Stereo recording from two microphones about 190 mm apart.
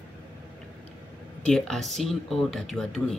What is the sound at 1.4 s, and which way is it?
Speech, 5° left (ahead or behind).